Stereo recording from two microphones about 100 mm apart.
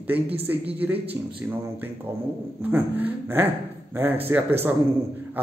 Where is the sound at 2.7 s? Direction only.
20° right (ahead or behind).